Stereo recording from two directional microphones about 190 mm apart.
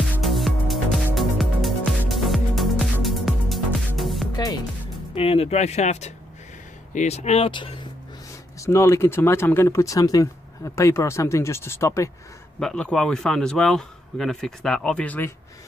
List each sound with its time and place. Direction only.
0.2 s music: centre (ahead or behind)
5.1 s speech: 30° left (ahead or behind)
8.5 s a man's voice: 15° left (ahead or behind)